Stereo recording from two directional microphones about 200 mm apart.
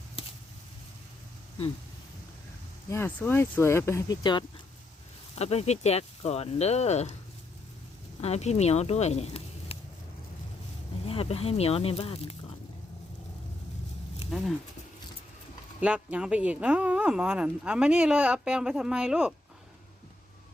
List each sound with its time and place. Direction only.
2.9 s speech: 10° left (ahead or behind); by 7.2 s 35° left (ahead or behind)
8.2 s speech: 30° left (ahead or behind)
11.0 s speech: 30° left (ahead or behind)
14.3 s speech: centre (ahead or behind)
15.8 s speech: 5° right (ahead or behind)